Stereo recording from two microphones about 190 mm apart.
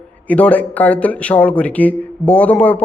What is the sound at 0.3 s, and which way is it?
A man's voice, 10° left (ahead or behind).